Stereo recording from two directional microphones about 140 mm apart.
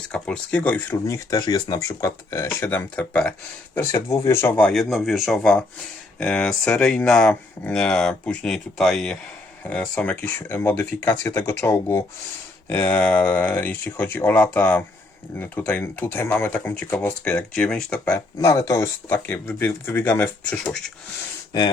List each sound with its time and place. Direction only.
0.1 s speech: 10° left (ahead or behind)
18.1 s speech: 20° left (ahead or behind)